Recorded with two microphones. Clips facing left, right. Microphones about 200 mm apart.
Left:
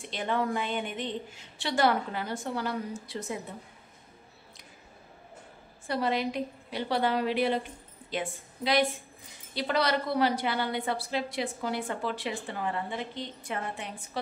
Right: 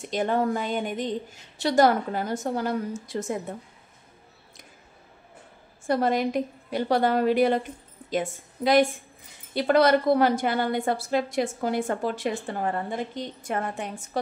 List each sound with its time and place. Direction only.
0.0 s a woman's voice: 45° right (ahead or behind)
5.9 s a woman's voice: 45° right (ahead or behind)